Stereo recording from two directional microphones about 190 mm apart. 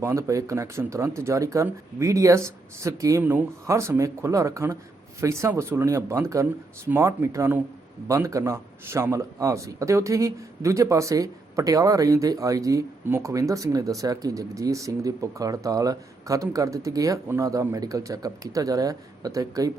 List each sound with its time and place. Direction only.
0.0 s speech: 15° right (ahead or behind)